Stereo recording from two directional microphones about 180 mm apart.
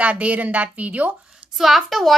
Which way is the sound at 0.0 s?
5° right (ahead or behind).